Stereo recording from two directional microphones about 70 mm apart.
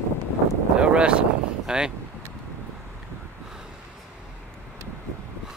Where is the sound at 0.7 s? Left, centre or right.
Centre.